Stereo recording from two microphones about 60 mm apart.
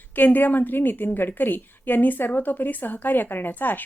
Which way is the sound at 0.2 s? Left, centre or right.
Left.